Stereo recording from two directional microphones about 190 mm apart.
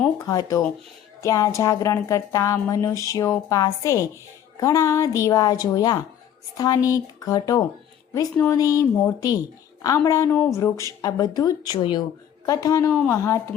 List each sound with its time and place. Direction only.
0.3 s a woman's voice: 20° left (ahead or behind)